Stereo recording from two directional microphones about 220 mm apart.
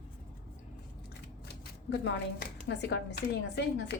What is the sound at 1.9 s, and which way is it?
A woman's voice, 50° left (ahead or behind).